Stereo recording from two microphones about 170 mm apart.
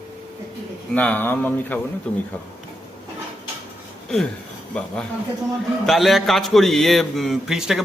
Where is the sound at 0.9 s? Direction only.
10° left (ahead or behind).